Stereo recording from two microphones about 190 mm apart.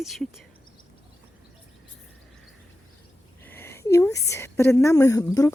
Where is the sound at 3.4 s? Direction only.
10° left (ahead or behind).